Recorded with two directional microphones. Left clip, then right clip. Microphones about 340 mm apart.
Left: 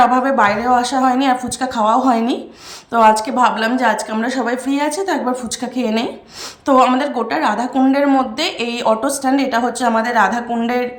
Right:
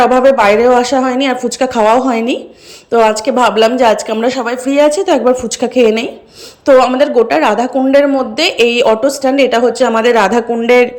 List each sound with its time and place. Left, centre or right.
0.0 s a woman's voice: centre